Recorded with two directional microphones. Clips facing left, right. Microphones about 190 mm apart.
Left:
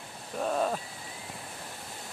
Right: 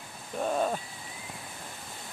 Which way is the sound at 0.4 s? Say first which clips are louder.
Even; centre (ahead or behind).